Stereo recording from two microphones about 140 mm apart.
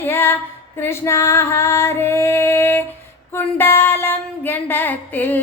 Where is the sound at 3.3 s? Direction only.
15° left (ahead or behind).